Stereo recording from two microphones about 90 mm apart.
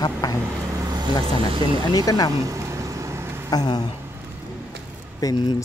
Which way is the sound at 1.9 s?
45° left (ahead or behind).